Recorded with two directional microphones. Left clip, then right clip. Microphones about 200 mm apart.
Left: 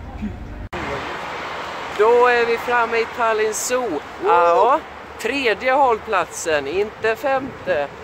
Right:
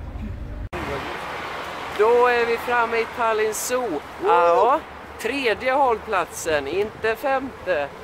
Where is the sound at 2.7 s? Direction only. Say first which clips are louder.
Left 3 dB; 5° left (ahead or behind).